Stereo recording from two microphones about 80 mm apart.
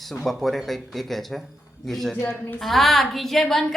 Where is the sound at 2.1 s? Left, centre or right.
Left.